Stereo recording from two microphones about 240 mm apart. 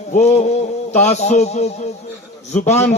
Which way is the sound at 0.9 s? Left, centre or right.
Left.